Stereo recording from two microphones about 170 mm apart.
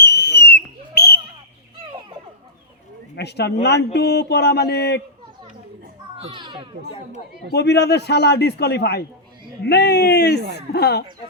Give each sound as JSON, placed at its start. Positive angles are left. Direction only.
{"t": 0.0, "sound": "whistle", "side_deg": 75}
{"t": 3.2, "sound": "a man's voice", "side_deg": 80}
{"t": 6.1, "sound": "a child's voice", "side_deg": -30}
{"t": 7.5, "sound": "a man's voice", "side_deg": 80}